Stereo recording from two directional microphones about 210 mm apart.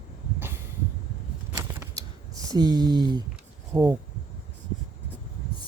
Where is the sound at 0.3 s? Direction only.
10° right (ahead or behind).